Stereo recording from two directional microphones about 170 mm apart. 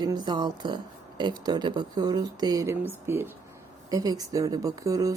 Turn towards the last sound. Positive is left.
turn(degrees=-20)  # may be behind; listen again after turning